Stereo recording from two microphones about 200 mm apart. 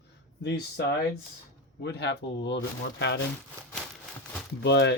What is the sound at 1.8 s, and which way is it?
Speech, 60° left (ahead or behind).